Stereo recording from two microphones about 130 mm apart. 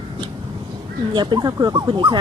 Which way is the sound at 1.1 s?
35° right (ahead or behind).